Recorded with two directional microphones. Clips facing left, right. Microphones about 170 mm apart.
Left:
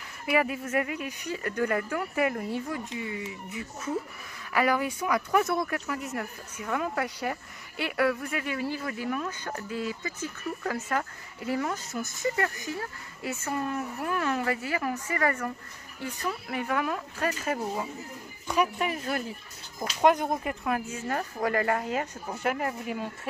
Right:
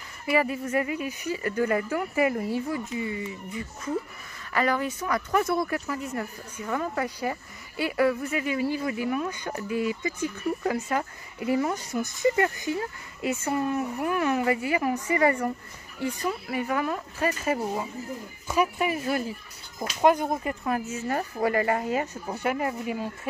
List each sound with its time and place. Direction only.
0.3 s speech: centre (ahead or behind)
11.9 s speech: 5° left (ahead or behind)
12.2 s speech: 20° right (ahead or behind); by 23.0 s 5° right (ahead or behind)